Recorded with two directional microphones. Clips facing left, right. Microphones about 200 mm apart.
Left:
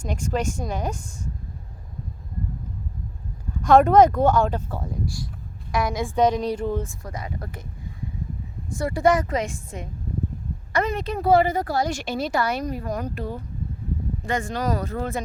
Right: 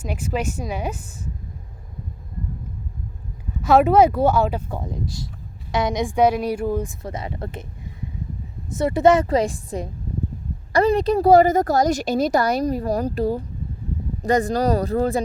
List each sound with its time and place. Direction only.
0.0 s speech: 5° right (ahead or behind)
3.6 s speech: 5° right (ahead or behind)
7.0 s speech: 25° right (ahead or behind)
8.7 s a woman's voice: 20° right (ahead or behind)